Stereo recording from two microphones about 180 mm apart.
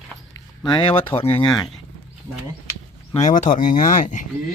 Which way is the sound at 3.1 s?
40° left (ahead or behind).